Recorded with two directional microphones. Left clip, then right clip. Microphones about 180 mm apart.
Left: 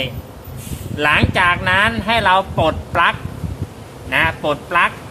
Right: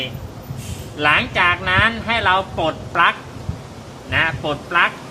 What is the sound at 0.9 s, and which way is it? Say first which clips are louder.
Speech: left 1 dB; 50° left (ahead or behind).